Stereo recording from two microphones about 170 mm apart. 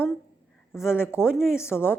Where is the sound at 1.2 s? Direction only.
5° right (ahead or behind).